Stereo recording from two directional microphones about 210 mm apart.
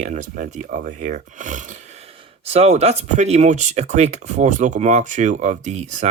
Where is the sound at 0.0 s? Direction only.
35° right (ahead or behind).